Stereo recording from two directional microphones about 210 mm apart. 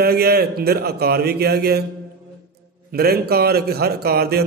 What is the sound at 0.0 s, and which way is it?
A man's voice, 45° right (ahead or behind).